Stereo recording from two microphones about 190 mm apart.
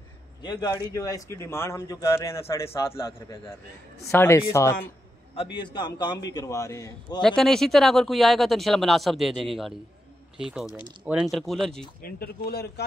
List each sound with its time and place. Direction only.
0.4 s a man's voice: 20° left (ahead or behind)
4.1 s a man's voice: 15° left (ahead or behind)
5.3 s a man's voice: 30° left (ahead or behind)
7.2 s speech: 5° left (ahead or behind)
12.0 s speech: 55° left (ahead or behind)